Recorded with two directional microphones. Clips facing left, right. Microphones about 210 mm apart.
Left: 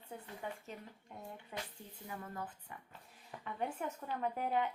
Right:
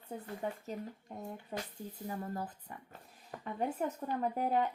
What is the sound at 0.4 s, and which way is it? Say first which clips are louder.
Speech: right 7 dB; 40° right (ahead or behind).